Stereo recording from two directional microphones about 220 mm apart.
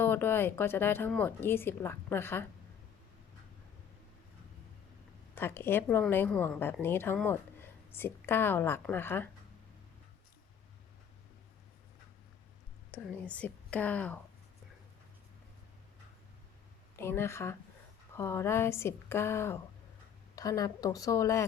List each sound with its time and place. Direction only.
0.0 s a woman's voice: 10° left (ahead or behind)
5.3 s a woman's voice: 10° left (ahead or behind)
12.9 s a woman's voice: 5° left (ahead or behind)
17.0 s a woman's voice: 10° left (ahead or behind)